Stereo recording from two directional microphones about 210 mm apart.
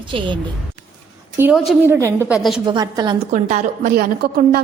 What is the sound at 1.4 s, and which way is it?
A woman's voice, 5° right (ahead or behind).